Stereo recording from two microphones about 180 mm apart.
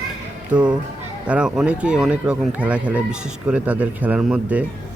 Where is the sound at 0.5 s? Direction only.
25° right (ahead or behind).